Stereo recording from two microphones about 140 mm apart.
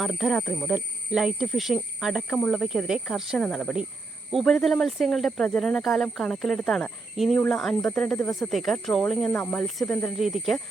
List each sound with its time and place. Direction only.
0.0 s speech: centre (ahead or behind)